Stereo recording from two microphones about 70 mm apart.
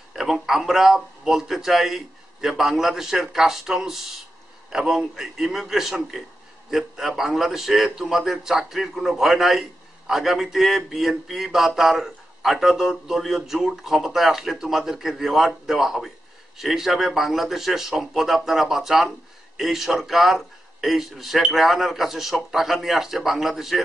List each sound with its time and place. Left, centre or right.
0.1 s a man's voice: centre